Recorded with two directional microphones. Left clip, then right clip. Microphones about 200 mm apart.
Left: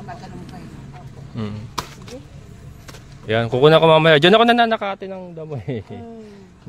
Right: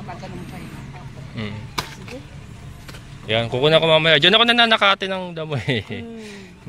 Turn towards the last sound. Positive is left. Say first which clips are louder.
# right 5 dB
turn(degrees=10)  # may be behind; listen again after turning